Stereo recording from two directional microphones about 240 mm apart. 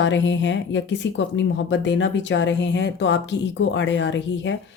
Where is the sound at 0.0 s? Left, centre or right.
Left.